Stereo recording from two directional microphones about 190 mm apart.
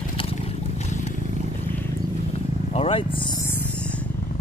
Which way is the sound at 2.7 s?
30° left (ahead or behind).